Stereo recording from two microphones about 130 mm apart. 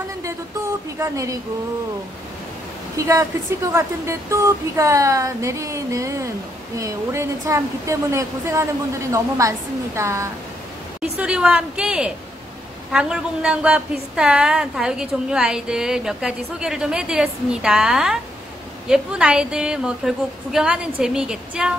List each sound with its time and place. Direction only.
0.9 s a woman's voice: 25° right (ahead or behind)
3.0 s a woman's voice: 25° right (ahead or behind)
11.0 s a woman's voice: 10° right (ahead or behind)